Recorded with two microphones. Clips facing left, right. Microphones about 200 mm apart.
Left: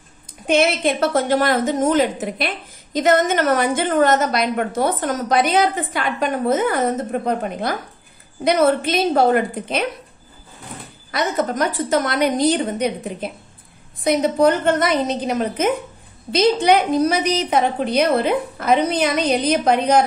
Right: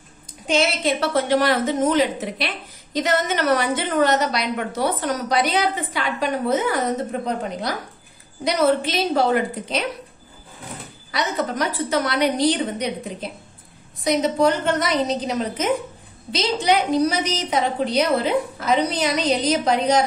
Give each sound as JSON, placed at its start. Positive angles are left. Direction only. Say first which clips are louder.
{"t": 0.5, "sound": "a woman's voice", "louder": "left 3 dB", "side_deg": 55}
{"t": 11.1, "sound": "a woman's voice", "louder": "left 3 dB", "side_deg": 50}